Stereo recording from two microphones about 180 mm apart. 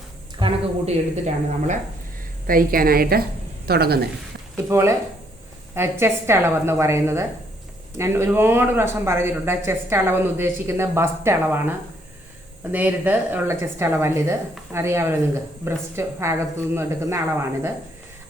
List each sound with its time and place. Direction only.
0.3 s a woman's voice: 35° right (ahead or behind)
2.5 s a woman's voice: 50° right (ahead or behind)
4.5 s speech: 15° right (ahead or behind)
12.7 s speech: 10° right (ahead or behind)